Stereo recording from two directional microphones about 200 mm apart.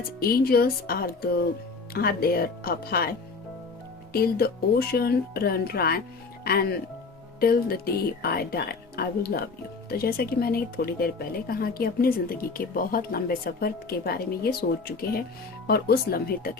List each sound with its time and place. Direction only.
0.2 s speech: 50° left (ahead or behind)
4.1 s speech: 50° left (ahead or behind)